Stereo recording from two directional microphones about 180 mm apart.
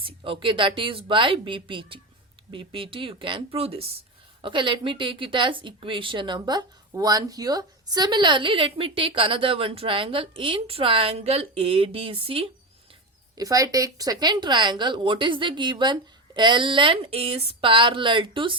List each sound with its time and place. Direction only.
0.0 s speech: 30° right (ahead or behind)
13.3 s speech: 20° right (ahead or behind)